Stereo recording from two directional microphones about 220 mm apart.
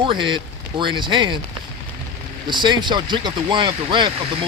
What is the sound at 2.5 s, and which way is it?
Speech, 20° right (ahead or behind).